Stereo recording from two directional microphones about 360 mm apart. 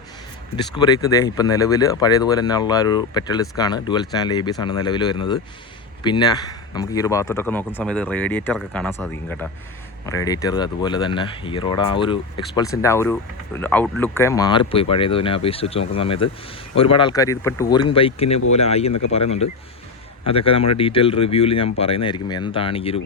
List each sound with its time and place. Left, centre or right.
0.5 s speech: centre
18.9 s speech: left
19.1 s speech: centre